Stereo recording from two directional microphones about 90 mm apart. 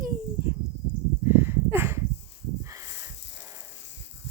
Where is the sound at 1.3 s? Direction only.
25° right (ahead or behind).